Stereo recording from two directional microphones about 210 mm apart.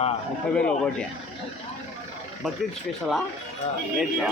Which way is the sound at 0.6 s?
5° left (ahead or behind).